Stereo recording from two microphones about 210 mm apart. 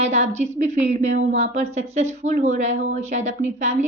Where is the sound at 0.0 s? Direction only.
30° right (ahead or behind).